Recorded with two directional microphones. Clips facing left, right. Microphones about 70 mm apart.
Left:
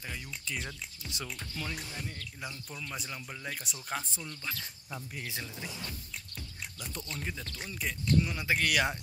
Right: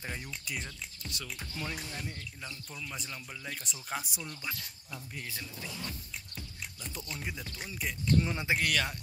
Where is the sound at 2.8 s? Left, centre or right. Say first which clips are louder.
Left 2 dB; centre.